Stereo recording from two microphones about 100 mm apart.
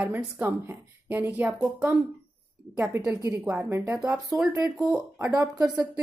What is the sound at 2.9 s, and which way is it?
Speech, 25° right (ahead or behind).